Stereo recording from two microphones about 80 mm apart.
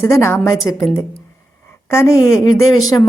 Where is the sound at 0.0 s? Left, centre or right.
Left.